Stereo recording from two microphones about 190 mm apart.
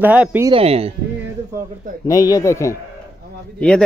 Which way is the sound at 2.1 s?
20° left (ahead or behind).